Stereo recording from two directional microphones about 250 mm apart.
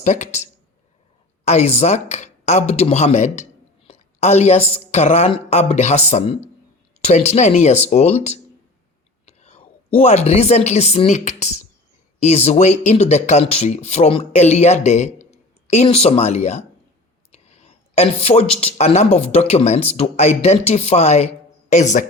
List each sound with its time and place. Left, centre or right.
0.0 s speech: left
1.5 s speech: left
17.3 s a sound: left
18.6 s speech: left